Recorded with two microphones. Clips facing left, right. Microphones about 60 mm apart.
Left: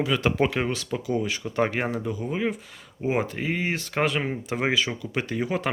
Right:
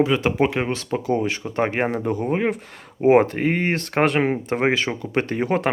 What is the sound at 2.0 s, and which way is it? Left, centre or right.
Speech, right.